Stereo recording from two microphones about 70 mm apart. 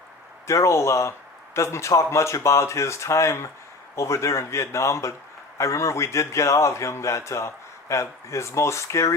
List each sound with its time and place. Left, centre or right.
0.4 s a man's voice: left